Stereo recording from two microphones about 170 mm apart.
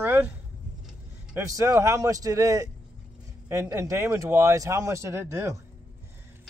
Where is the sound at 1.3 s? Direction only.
20° right (ahead or behind).